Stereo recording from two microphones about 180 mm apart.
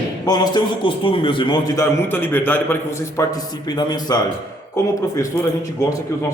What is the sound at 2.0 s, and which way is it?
Speech, 10° left (ahead or behind).